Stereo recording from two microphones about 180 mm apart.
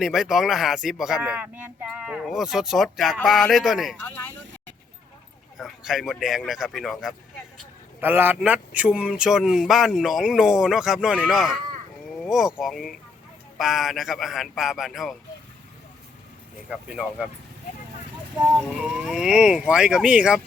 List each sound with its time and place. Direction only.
0.0 s speech: centre (ahead or behind)
5.5 s speech: centre (ahead or behind)
8.0 s speech: 10° right (ahead or behind)
16.6 s speech: 5° right (ahead or behind)
18.8 s speech: 5° right (ahead or behind)